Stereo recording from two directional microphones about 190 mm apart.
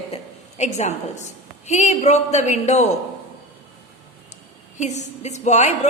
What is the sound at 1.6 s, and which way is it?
A man's voice, 35° left (ahead or behind).